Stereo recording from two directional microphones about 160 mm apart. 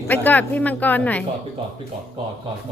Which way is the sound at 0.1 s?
10° left (ahead or behind).